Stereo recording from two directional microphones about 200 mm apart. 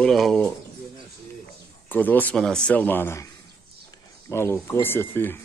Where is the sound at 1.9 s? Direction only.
10° left (ahead or behind).